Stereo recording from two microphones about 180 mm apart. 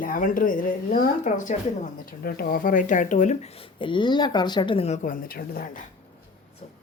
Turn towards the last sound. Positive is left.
turn(degrees=50)  # may be behind; listen again after turning